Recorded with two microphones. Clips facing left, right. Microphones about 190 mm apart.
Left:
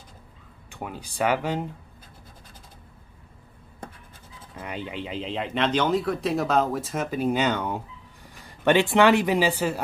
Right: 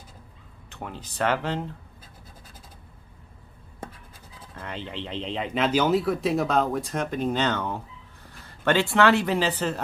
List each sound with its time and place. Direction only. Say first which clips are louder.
0.7 s speech: left 2 dB; 10° left (ahead or behind)
4.6 s speech: left 2 dB; 10° left (ahead or behind)